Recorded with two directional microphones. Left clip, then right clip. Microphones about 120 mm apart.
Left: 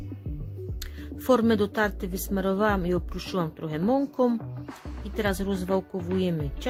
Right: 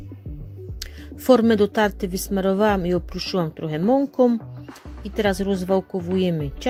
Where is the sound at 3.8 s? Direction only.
25° right (ahead or behind).